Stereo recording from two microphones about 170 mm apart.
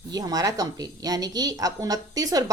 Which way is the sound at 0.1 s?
20° right (ahead or behind).